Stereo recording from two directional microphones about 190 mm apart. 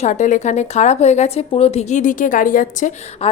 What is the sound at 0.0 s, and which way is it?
A woman's voice, 40° left (ahead or behind).